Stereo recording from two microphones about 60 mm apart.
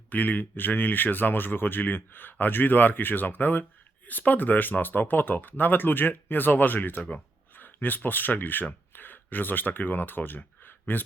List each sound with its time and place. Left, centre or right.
0.1 s speech: left